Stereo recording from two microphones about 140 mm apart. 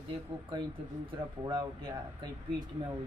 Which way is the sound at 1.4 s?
35° right (ahead or behind).